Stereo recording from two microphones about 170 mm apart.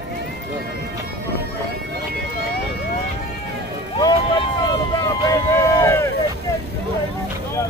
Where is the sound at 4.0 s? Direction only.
25° left (ahead or behind).